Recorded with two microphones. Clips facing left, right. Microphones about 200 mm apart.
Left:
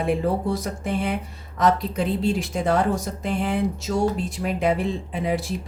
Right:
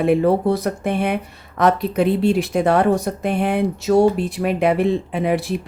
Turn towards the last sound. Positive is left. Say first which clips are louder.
# right 5 dB
turn(degrees=-65)  # may be behind; listen again after turning